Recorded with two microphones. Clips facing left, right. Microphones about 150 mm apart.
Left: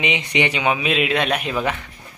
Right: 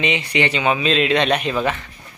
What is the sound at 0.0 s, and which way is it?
A man's voice, 15° left (ahead or behind).